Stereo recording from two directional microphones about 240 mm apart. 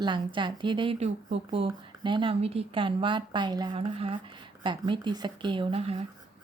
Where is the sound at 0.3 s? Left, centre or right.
Centre.